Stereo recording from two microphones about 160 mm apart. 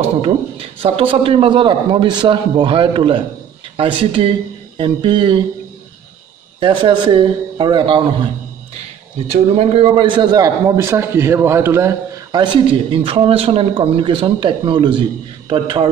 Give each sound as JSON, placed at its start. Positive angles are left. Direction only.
{"t": 0.2, "sound": "a man's voice", "side_deg": -35}
{"t": 6.6, "sound": "a man's voice", "side_deg": -30}
{"t": 9.3, "sound": "a man's voice", "side_deg": -40}
{"t": 12.3, "sound": "a man's voice", "side_deg": -30}